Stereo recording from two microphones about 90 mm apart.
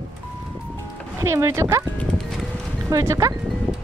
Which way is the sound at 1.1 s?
30° right (ahead or behind).